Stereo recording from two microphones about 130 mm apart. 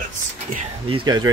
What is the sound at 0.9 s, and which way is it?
Speech, 30° right (ahead or behind).